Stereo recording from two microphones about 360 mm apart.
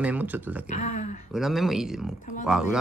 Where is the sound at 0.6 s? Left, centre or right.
Centre.